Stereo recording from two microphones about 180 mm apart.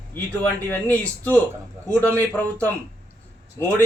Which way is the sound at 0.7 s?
10° left (ahead or behind).